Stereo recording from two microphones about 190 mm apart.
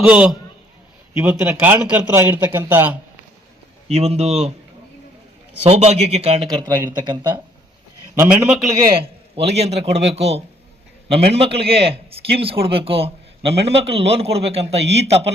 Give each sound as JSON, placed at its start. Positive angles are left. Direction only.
{"t": 0.0, "sound": "speech", "side_deg": -5}
{"t": 3.8, "sound": "a man's voice", "side_deg": -35}
{"t": 5.6, "sound": "a man's voice", "side_deg": -35}
{"t": 6.5, "sound": "speech", "side_deg": -20}
{"t": 8.1, "sound": "a man's voice", "side_deg": -10}
{"t": 8.7, "sound": "a man's voice", "side_deg": -20}